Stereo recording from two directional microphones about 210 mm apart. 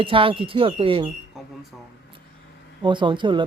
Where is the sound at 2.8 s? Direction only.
20° right (ahead or behind).